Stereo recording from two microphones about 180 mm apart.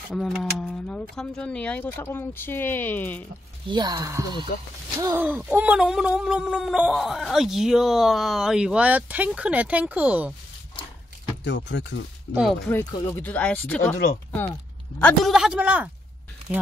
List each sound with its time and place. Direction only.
0.1 s speech: centre (ahead or behind)
3.6 s speech: 25° right (ahead or behind)
5.0 s speech: 10° right (ahead or behind)
11.4 s speech: 75° left (ahead or behind)
12.9 s speech: 10° left (ahead or behind)
15.0 s speech: 5° left (ahead or behind)